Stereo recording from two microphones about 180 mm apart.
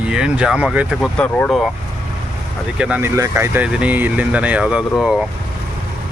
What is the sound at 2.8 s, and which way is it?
Speech, 10° right (ahead or behind).